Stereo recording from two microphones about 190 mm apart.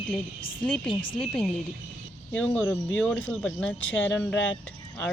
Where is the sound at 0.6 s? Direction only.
5° left (ahead or behind).